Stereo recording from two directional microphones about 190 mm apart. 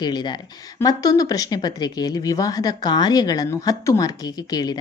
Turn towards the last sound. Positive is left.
turn(degrees=20)  # may be behind; listen again after turning